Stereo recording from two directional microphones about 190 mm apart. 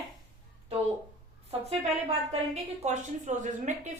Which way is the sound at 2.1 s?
35° right (ahead or behind).